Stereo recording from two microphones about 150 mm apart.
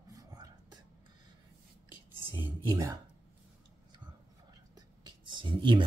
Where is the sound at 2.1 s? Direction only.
15° right (ahead or behind).